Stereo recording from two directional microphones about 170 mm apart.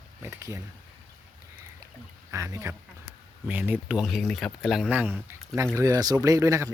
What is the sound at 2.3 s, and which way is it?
Speech, 20° right (ahead or behind).